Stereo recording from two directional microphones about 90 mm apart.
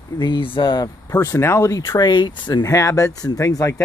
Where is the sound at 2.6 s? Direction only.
35° left (ahead or behind).